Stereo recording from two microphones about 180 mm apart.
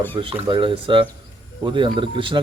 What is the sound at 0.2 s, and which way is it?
Speech, 25° right (ahead or behind).